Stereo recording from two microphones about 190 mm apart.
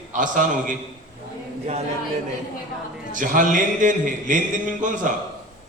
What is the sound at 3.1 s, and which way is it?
A man's voice, 45° right (ahead or behind).